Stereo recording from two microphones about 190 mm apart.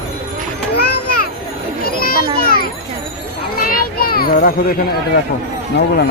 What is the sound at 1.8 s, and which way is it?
Children playing, 50° left (ahead or behind).